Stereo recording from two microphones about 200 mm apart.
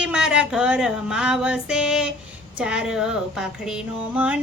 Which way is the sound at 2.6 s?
5° right (ahead or behind).